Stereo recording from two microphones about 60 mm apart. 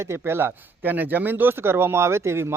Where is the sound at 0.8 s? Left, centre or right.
Right.